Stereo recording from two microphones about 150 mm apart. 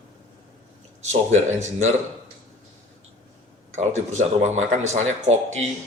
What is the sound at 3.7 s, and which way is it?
Speech, 50° right (ahead or behind).